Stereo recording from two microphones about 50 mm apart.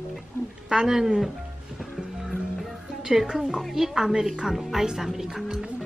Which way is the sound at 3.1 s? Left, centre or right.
Centre.